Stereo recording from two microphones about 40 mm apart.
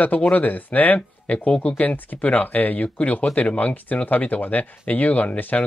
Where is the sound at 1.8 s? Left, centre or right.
Left.